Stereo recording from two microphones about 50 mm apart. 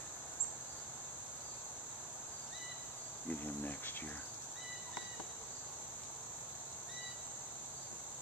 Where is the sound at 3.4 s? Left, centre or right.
Left.